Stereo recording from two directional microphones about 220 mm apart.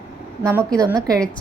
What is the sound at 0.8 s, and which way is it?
Speech, 15° right (ahead or behind).